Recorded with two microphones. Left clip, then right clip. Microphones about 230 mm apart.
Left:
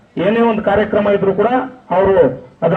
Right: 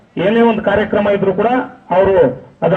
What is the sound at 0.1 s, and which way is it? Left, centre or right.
A man's voice, right.